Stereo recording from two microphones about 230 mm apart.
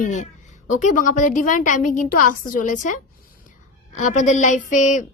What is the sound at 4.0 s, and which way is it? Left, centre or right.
Speech, left.